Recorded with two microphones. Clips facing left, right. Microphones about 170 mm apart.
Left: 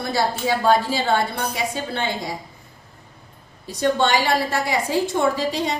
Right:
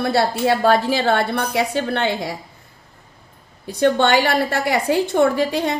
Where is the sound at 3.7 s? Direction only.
60° right (ahead or behind).